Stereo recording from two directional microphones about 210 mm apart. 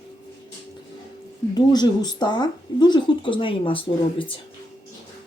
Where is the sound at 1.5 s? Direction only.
20° left (ahead or behind).